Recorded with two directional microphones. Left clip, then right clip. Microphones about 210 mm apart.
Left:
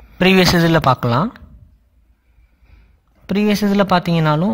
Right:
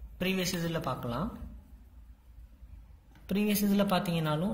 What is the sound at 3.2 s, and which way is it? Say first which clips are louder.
Speech: left 14 dB; 35° left (ahead or behind).